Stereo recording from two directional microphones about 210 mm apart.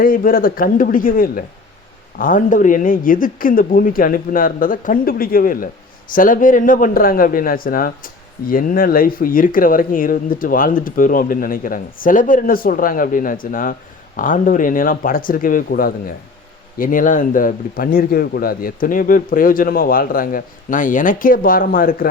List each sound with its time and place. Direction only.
0.0 s a man's voice: 40° left (ahead or behind)